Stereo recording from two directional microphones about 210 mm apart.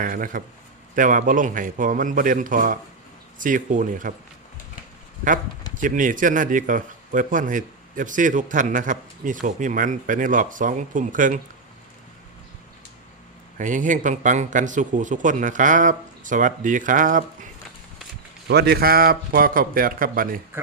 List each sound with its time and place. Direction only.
0.0 s speech: 40° right (ahead or behind)
5.7 s speech: 40° right (ahead or behind)
13.6 s speech: 35° right (ahead or behind)
18.4 s speech: 50° right (ahead or behind)